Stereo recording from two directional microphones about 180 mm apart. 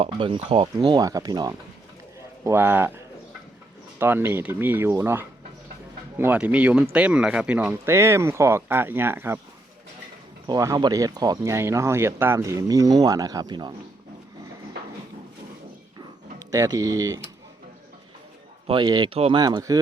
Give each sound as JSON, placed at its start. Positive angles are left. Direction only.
{"t": 0.0, "sound": "speech", "side_deg": -30}
{"t": 10.4, "sound": "speech", "side_deg": -20}
{"t": 16.4, "sound": "speech", "side_deg": -20}
{"t": 18.7, "sound": "speech", "side_deg": -25}